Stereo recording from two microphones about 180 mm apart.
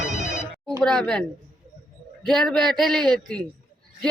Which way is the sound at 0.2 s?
45° right (ahead or behind).